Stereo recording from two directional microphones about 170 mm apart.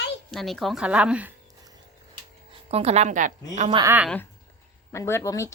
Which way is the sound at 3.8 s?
10° right (ahead or behind).